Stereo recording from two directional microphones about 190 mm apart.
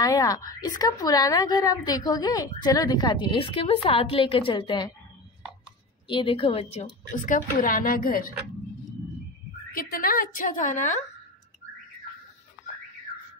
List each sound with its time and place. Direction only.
0.0 s a woman's voice: 20° left (ahead or behind)
6.0 s a woman's voice: 25° left (ahead or behind); by 8.3 s 50° left (ahead or behind)
9.7 s a woman's voice: 50° left (ahead or behind)